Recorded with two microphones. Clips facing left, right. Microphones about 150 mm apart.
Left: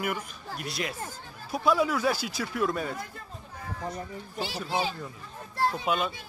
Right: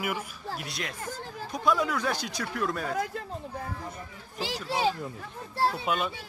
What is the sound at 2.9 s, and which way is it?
Speech, 85° right.